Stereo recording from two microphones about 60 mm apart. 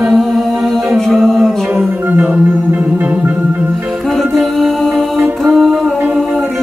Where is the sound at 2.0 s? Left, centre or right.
Right.